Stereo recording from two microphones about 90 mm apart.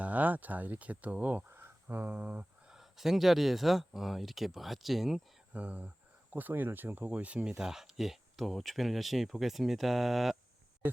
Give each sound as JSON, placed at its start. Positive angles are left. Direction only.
{"t": 0.0, "sound": "speech", "side_deg": -20}
{"t": 5.5, "sound": "speech", "side_deg": -15}
{"t": 10.8, "sound": "speech", "side_deg": -20}